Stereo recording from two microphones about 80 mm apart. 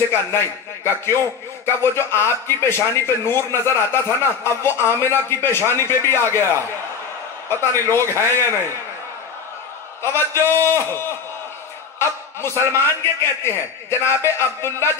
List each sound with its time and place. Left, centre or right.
0.8 s a man's voice: left
10.0 s a man's voice: left